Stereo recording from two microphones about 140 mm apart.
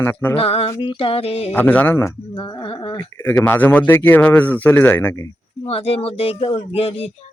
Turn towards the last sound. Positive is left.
turn(degrees=45)  # may be behind; listen again after turning